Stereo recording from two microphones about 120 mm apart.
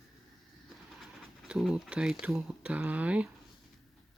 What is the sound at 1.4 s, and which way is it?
Speech, 5° right (ahead or behind).